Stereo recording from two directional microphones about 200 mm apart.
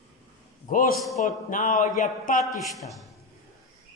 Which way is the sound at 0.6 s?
40° left (ahead or behind).